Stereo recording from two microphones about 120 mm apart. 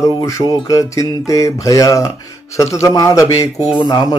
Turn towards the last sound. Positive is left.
turn(degrees=35)  # may be behind; listen again after turning